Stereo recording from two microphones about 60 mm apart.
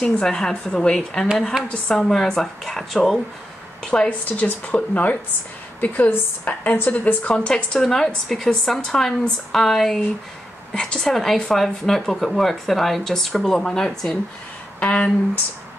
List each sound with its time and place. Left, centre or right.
0.0 s a woman's voice: centre
4.1 s a woman's voice: left; by 13.8 s centre
14.8 s speech: left